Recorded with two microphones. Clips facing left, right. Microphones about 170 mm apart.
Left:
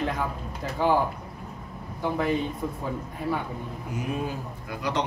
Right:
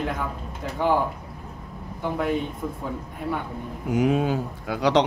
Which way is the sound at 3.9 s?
90° right.